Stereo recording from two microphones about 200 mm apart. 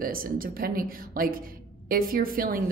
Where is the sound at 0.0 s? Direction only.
45° right (ahead or behind).